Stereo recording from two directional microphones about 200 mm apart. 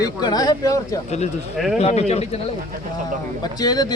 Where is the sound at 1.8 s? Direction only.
35° left (ahead or behind).